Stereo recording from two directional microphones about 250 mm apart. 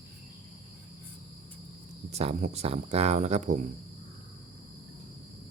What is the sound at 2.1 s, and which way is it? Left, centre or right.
Speech, right.